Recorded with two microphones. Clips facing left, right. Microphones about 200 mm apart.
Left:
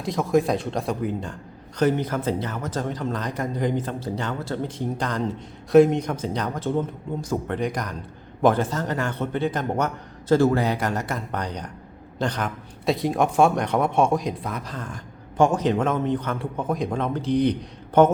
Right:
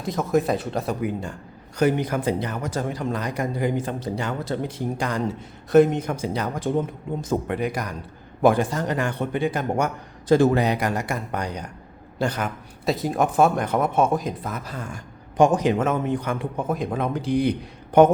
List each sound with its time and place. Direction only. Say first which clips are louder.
0.0 s a man's voice: left 1 dB; centre (ahead or behind); by 7.5 s 20° right (ahead or behind)
7.5 s a man's voice: even; 5° right (ahead or behind)